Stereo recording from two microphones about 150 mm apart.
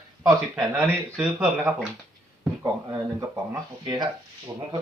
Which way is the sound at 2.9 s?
20° right (ahead or behind).